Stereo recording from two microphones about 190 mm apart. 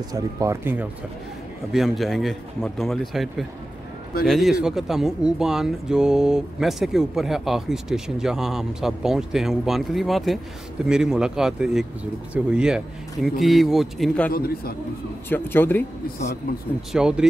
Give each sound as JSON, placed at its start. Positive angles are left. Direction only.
{"t": 0.1, "sound": "speech", "side_deg": -15}
{"t": 1.7, "sound": "speech", "side_deg": 0}
{"t": 14.3, "sound": "a man's voice", "side_deg": 50}
{"t": 15.2, "sound": "a man's voice", "side_deg": 10}
{"t": 16.9, "sound": "speech", "side_deg": -5}